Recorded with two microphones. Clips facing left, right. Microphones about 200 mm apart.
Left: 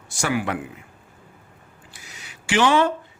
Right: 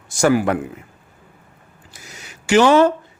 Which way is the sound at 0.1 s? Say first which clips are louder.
Right 8 dB; 45° right (ahead or behind).